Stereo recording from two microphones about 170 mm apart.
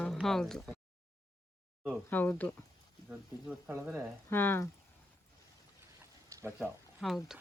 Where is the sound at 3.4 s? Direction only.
10° right (ahead or behind).